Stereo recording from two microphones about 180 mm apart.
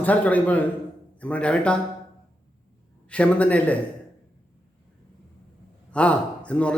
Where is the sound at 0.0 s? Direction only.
10° left (ahead or behind).